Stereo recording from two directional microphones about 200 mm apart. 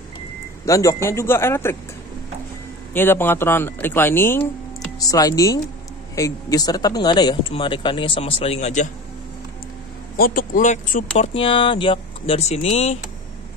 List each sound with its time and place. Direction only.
0.7 s speech: 15° left (ahead or behind)
2.9 s speech: 10° left (ahead or behind); by 8.8 s 35° left (ahead or behind)
10.1 s speech: 45° left (ahead or behind)
11.1 s speech: 25° left (ahead or behind)